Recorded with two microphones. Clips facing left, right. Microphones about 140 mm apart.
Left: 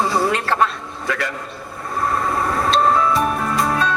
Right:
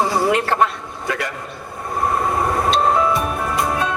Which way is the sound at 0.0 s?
20° right (ahead or behind).